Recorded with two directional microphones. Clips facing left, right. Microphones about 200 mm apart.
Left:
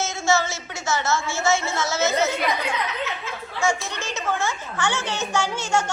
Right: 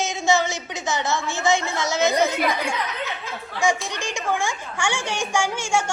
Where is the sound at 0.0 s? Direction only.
15° right (ahead or behind).